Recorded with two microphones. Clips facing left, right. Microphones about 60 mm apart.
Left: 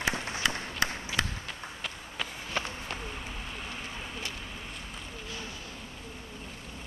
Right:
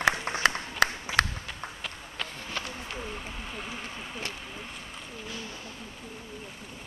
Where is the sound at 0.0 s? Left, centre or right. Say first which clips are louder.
Right 5 dB; right.